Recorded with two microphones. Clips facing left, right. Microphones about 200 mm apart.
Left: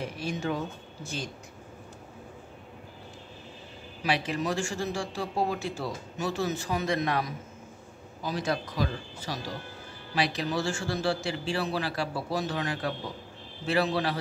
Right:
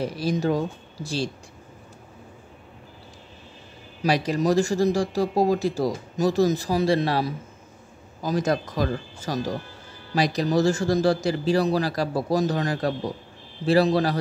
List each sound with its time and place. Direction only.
0.0 s speech: 35° right (ahead or behind)
4.0 s speech: 40° right (ahead or behind)
8.2 s speech: 45° right (ahead or behind)